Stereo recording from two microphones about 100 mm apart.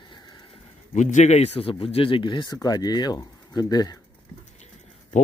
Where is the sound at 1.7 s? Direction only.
65° left (ahead or behind); by 2.6 s 50° left (ahead or behind).